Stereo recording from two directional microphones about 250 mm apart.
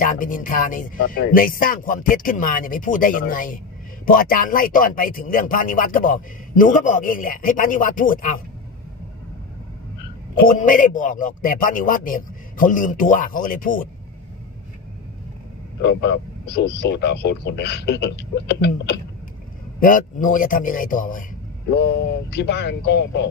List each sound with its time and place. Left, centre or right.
0.0 s speech: left
10.4 s speech: left
15.8 s speech: left
22.3 s speech: left